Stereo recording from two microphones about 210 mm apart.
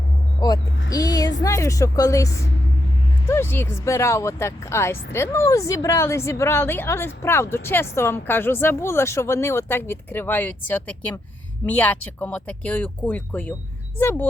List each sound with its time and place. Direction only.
0.3 s vehicle: 20° left (ahead or behind)
1.5 s speech: 15° left (ahead or behind)